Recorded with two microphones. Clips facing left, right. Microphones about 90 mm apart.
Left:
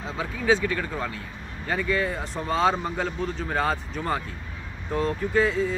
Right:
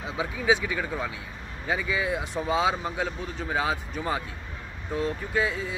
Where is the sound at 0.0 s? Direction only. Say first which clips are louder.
Even; 10° right (ahead or behind).